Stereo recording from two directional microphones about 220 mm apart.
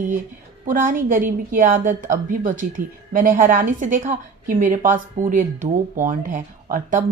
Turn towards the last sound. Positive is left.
turn(degrees=-35)  # may be behind; listen again after turning